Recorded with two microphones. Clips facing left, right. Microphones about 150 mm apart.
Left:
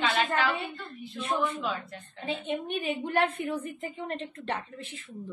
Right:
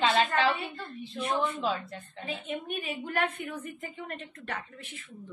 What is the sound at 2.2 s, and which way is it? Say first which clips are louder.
A woman's voice: left 4 dB; 30° left (ahead or behind).